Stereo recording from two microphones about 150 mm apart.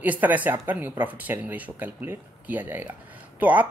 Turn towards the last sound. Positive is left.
turn(degrees=-10)  # may be behind; listen again after turning